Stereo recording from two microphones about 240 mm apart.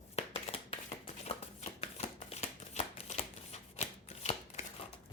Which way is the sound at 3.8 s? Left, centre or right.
Left.